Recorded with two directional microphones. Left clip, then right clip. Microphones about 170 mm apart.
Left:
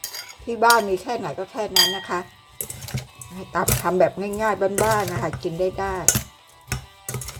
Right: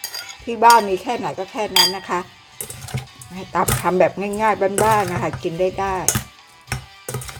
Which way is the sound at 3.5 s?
15° right (ahead or behind).